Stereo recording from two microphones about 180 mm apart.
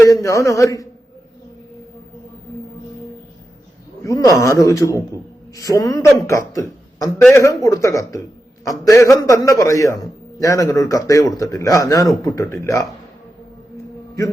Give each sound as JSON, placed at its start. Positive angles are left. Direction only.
{"t": 0.0, "sound": "a man's voice", "side_deg": 15}
{"t": 4.0, "sound": "a man's voice", "side_deg": 20}